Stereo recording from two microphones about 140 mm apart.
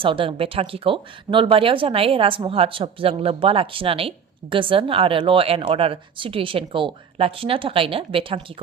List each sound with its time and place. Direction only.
0.0 s speech: 40° right (ahead or behind)